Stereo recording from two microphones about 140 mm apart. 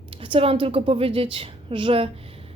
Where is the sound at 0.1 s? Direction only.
40° right (ahead or behind).